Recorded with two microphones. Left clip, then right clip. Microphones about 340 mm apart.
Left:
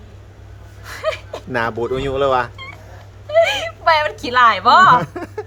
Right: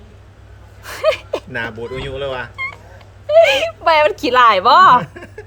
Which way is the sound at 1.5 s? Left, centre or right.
Centre.